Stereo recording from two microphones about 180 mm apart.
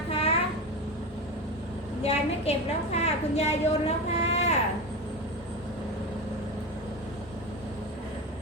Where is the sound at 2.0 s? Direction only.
35° left (ahead or behind).